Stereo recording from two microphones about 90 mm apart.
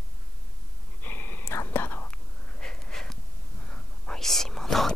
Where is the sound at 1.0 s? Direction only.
25° left (ahead or behind); by 4.9 s 5° left (ahead or behind).